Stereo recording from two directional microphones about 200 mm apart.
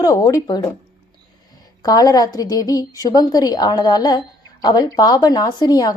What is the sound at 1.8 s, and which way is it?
A woman's voice, 20° left (ahead or behind).